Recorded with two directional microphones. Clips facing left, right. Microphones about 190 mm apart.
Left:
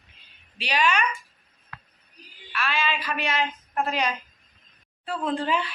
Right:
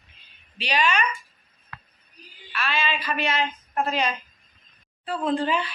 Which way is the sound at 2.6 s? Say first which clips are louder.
Even; 10° left (ahead or behind).